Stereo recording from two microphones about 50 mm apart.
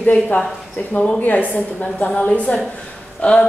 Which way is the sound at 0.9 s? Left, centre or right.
Left.